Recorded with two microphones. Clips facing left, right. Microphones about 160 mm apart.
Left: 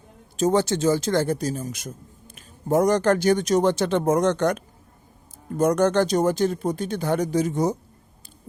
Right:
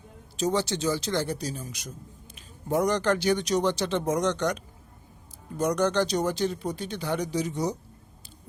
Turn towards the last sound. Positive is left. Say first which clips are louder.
# left 6 dB
turn(degrees=50)  # may be behind; listen again after turning